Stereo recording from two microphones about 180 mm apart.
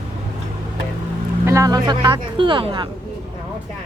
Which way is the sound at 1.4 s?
15° right (ahead or behind).